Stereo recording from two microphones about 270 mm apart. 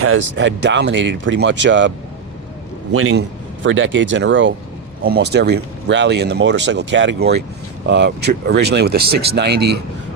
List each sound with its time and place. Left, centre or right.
0.0 s speech: right
2.9 s speech: right